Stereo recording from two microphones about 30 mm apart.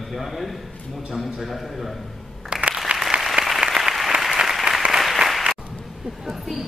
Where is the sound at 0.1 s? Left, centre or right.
Centre.